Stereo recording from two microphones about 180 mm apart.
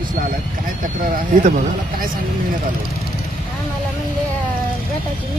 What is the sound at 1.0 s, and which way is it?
Speech, 50° right (ahead or behind).